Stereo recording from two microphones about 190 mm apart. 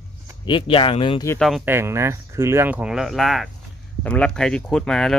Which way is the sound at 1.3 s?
Centre (ahead or behind).